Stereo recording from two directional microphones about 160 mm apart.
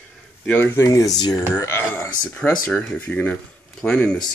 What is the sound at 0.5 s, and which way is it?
Speech, 10° left (ahead or behind).